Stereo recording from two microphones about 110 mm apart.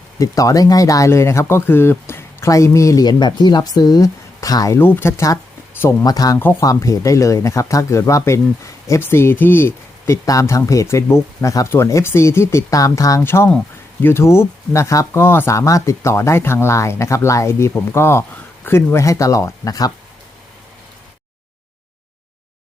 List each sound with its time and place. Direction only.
0.2 s speech: 30° left (ahead or behind)
4.8 s speech: 20° left (ahead or behind)
10.2 s speech: 30° left (ahead or behind)